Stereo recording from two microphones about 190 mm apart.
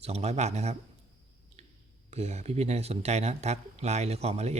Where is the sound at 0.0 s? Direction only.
35° right (ahead or behind).